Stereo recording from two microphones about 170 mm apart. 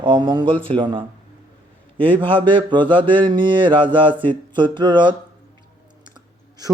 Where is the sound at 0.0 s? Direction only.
30° right (ahead or behind).